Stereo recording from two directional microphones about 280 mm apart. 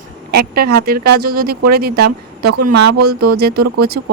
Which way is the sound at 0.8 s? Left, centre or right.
Right.